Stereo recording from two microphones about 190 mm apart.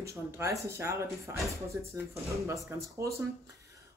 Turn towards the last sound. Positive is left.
turn(degrees=-15)  # may be behind; listen again after turning